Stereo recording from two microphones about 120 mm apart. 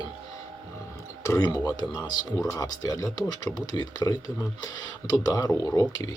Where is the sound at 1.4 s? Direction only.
35° left (ahead or behind).